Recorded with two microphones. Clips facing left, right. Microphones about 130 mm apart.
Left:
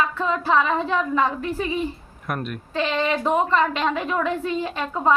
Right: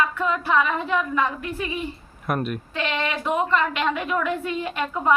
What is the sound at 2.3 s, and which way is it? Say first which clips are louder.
Speech: right 3 dB; 5° right (ahead or behind).